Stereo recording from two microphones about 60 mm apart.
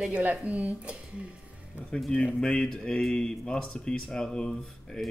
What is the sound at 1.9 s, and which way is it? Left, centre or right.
Speech, centre.